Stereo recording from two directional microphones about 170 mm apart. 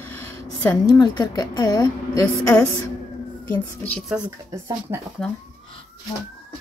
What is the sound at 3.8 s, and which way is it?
Speech, 5° left (ahead or behind).